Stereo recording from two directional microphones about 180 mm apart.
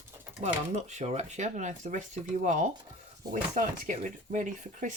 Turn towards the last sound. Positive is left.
turn(degrees=-45)  # may be behind; listen again after turning